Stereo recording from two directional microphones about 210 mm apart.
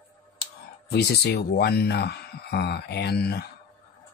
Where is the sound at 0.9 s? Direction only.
50° left (ahead or behind).